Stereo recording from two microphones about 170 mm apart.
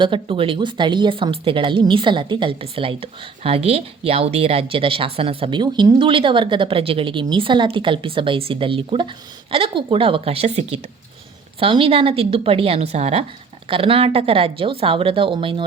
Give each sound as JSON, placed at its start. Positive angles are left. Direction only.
{"t": 0.0, "sound": "a woman's voice", "side_deg": -30}